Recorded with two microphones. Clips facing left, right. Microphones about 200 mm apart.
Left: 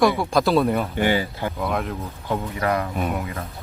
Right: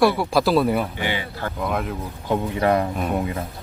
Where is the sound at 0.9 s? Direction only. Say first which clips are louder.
Left 6 dB; 45° left (ahead or behind).